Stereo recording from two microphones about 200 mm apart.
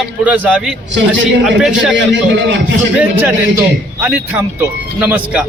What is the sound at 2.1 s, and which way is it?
Speech, 60° right (ahead or behind).